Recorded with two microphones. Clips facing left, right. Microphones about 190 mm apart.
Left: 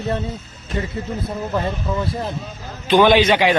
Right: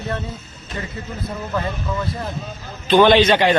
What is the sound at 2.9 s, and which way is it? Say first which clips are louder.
Speech: right 1 dB; 10° left (ahead or behind).